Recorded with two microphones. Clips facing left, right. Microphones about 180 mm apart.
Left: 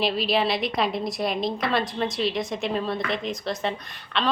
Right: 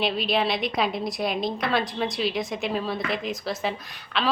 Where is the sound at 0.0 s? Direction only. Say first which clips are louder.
Left 1 dB; centre (ahead or behind).